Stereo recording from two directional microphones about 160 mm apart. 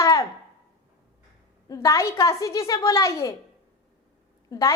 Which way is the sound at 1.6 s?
20° left (ahead or behind).